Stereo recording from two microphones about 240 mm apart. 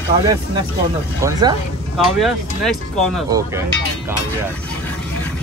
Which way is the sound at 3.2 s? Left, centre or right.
Centre.